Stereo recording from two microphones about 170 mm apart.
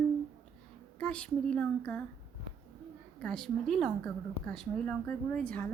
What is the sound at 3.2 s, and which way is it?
A woman's voice, 5° left (ahead or behind).